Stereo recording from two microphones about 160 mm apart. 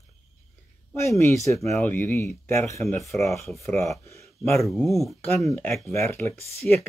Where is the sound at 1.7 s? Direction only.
10° left (ahead or behind).